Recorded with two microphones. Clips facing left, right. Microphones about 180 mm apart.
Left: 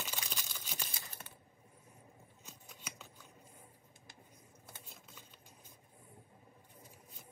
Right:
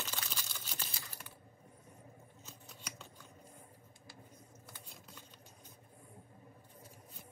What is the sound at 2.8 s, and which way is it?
Scissors, 5° left (ahead or behind).